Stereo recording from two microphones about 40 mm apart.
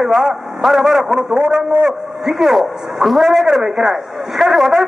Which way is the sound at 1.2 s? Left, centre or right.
Right.